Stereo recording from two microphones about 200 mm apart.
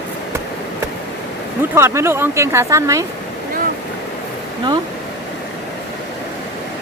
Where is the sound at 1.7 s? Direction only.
10° right (ahead or behind).